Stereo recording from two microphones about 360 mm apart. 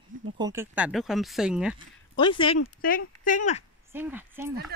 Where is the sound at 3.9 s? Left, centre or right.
Centre.